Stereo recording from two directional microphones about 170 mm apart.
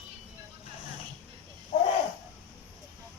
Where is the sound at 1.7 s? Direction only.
45° left (ahead or behind).